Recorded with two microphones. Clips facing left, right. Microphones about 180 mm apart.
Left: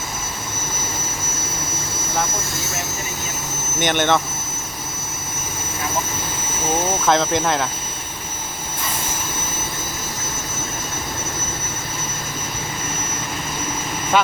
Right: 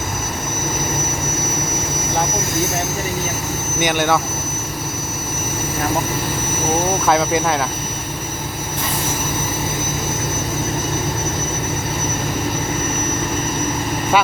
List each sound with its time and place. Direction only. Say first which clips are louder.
3.8 s speech: right 1 dB; 5° right (ahead or behind)
7.0 s speech: right 2 dB; 10° right (ahead or behind)